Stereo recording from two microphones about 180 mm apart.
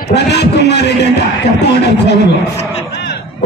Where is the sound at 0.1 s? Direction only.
70° left (ahead or behind).